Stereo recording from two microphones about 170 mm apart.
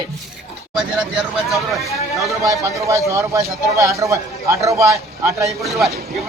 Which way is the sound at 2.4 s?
20° right (ahead or behind).